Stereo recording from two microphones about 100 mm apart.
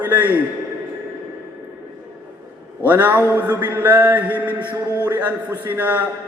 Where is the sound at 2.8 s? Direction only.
15° right (ahead or behind).